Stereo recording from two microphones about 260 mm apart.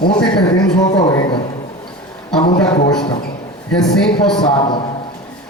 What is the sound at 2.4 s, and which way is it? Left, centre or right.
Speech, left.